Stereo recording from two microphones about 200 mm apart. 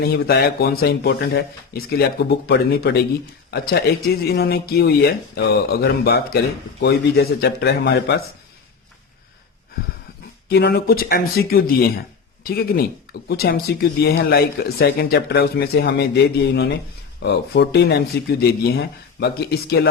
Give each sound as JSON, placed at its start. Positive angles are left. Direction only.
{"t": 0.0, "sound": "a man's voice", "side_deg": 50}
{"t": 10.5, "sound": "speech", "side_deg": 55}